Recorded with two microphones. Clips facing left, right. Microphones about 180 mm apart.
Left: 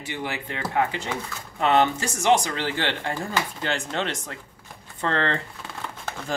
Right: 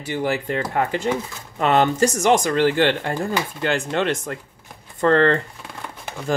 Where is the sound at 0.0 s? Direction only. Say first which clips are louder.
Right 8 dB; 40° right (ahead or behind).